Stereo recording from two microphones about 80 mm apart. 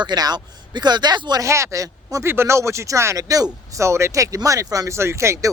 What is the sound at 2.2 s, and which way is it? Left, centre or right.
Speech, right.